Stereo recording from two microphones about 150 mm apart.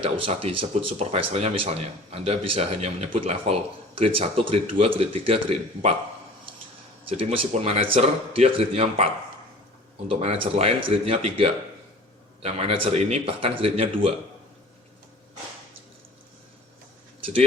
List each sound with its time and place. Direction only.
0.0 s speech: 40° right (ahead or behind)
7.1 s speech: 40° right (ahead or behind)